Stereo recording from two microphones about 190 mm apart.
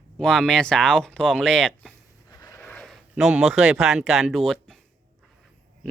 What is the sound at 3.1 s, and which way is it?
Speech, 5° right (ahead or behind).